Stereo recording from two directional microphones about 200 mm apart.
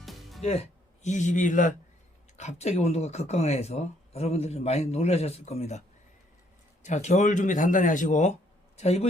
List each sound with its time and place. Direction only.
0.0 s music: centre (ahead or behind)
0.4 s speech: 30° left (ahead or behind)
6.8 s speech: 35° left (ahead or behind)